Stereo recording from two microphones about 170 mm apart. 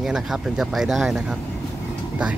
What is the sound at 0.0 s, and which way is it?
Speech, 5° right (ahead or behind).